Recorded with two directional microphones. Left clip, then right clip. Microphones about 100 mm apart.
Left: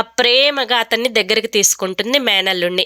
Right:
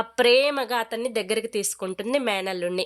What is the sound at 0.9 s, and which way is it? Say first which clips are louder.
Speech: left 11 dB; 40° left (ahead or behind).